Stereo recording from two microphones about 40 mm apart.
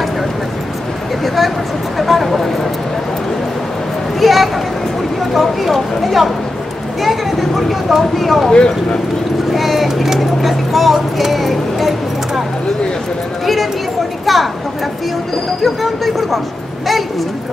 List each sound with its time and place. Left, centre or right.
1.2 s a sound: centre
2.0 s speech: centre
4.2 s speech: centre
8.5 s speech: centre
9.5 s speech: centre
14.2 s speech: centre
15.6 s speech: centre